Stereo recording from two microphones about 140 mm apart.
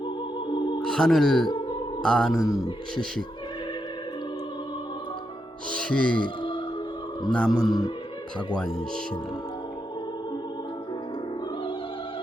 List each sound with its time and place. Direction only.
0.8 s speech: 5° left (ahead or behind)
5.7 s music: 5° left (ahead or behind)
6.2 s music: 35° left (ahead or behind)
7.3 s speech: 5° left (ahead or behind)